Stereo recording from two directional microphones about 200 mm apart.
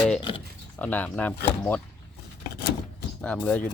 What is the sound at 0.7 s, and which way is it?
Speech, 10° left (ahead or behind).